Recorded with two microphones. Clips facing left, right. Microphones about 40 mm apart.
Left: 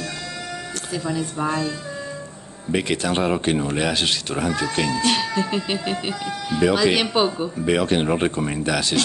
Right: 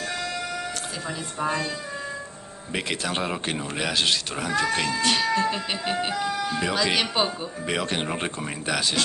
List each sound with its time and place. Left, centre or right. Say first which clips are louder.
1.0 s speech: left 4 dB; centre
2.7 s speech: left 6 dB; centre